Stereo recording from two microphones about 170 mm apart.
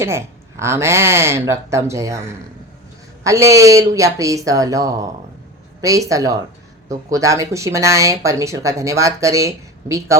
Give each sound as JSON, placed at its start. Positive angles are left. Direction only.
{"t": 0.0, "sound": "speech", "side_deg": -15}